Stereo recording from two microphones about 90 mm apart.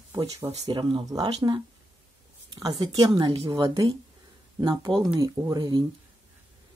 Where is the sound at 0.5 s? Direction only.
45° right (ahead or behind).